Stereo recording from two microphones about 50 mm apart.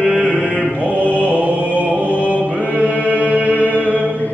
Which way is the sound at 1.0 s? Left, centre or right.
Left.